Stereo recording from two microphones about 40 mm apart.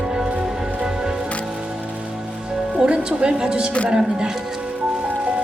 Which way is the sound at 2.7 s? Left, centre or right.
Right.